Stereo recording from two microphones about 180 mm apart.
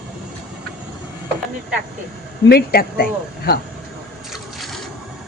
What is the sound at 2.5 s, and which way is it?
Speech, 60° left (ahead or behind).